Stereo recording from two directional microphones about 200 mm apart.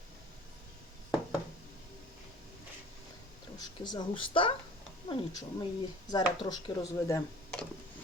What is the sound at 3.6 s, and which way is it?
Speech, 20° left (ahead or behind).